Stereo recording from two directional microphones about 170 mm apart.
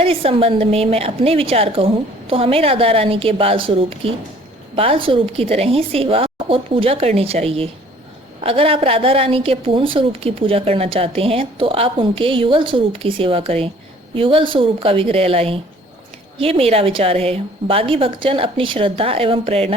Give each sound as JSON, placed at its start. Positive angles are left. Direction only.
{"t": 0.0, "sound": "a woman's voice", "side_deg": -35}